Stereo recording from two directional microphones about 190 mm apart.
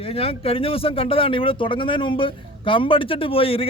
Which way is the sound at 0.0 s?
30° left (ahead or behind).